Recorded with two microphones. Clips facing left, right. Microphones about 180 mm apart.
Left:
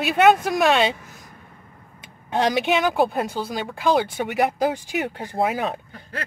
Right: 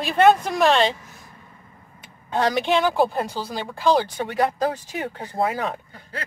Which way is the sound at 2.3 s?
15° left (ahead or behind).